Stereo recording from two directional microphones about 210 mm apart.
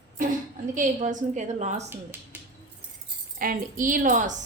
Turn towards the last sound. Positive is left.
turn(degrees=-35)  # may be behind; listen again after turning